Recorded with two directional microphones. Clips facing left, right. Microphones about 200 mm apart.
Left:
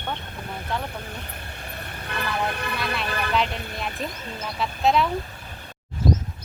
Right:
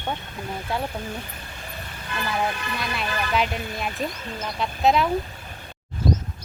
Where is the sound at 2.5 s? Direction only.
60° left (ahead or behind).